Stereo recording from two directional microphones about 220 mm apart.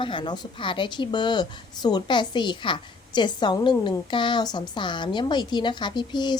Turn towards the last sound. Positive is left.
turn(degrees=20)  # may be behind; listen again after turning